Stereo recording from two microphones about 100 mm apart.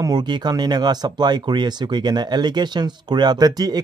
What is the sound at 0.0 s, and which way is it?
Speech, 45° right (ahead or behind).